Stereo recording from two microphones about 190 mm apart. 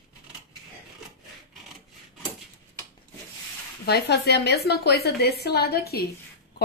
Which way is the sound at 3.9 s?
60° left (ahead or behind).